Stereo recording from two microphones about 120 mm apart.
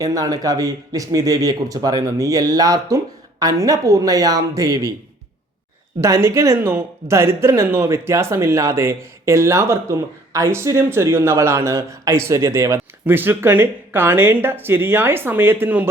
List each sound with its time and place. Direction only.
0.0 s speech: 30° right (ahead or behind)
6.0 s speech: 25° right (ahead or behind)